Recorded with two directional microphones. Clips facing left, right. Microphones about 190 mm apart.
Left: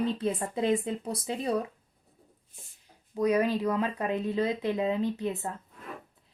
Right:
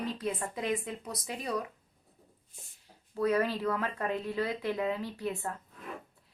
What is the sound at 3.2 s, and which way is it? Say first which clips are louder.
Speech: left 3 dB; 15° left (ahead or behind).